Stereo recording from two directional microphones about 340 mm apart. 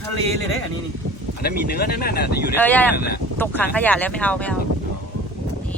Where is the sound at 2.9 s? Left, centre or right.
Left.